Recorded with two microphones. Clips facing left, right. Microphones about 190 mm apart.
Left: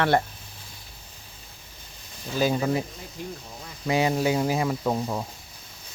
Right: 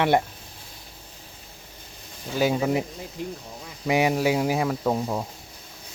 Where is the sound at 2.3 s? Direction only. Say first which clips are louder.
Right 1 dB; 10° right (ahead or behind).